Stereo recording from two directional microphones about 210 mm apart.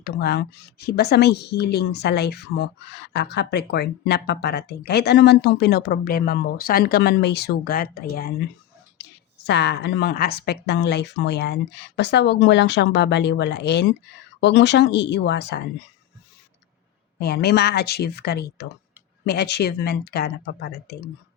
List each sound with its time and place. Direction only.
0.0 s speech: 45° left (ahead or behind)
9.5 s speech: 55° left (ahead or behind)
17.2 s speech: 50° left (ahead or behind)